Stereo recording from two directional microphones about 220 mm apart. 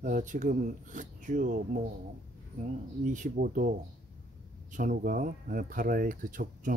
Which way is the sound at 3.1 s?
35° right (ahead or behind).